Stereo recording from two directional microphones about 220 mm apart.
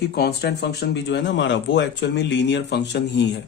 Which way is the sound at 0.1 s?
45° left (ahead or behind).